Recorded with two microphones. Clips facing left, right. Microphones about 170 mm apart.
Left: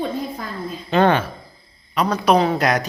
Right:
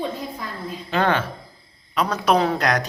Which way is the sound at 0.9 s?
20° left (ahead or behind).